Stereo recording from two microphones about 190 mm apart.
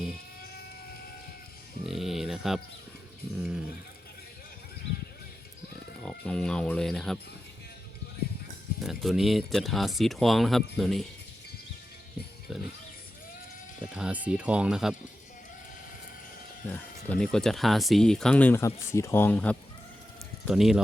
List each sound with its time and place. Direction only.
1.9 s speech: centre (ahead or behind)
6.0 s speech: 5° left (ahead or behind)
8.8 s speech: centre (ahead or behind)
12.5 s speech: centre (ahead or behind)
13.8 s speech: 5° right (ahead or behind)
16.6 s speech: 10° left (ahead or behind)